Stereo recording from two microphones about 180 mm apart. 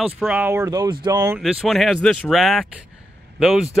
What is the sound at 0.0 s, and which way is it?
Speech, 5° right (ahead or behind).